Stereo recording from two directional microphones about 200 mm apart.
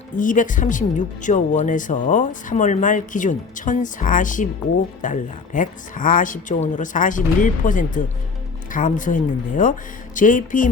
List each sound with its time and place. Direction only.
0.2 s speech: 40° left (ahead or behind)